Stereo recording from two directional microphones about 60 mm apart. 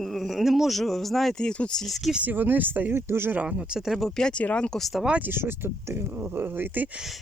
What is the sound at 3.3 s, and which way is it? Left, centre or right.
Speech, centre.